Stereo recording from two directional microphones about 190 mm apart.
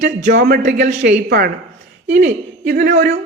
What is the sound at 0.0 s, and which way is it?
Speech, 60° right (ahead or behind).